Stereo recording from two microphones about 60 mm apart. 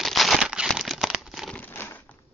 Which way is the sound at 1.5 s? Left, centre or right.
Left.